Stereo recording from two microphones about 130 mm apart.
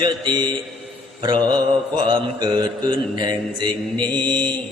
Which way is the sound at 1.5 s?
35° right (ahead or behind).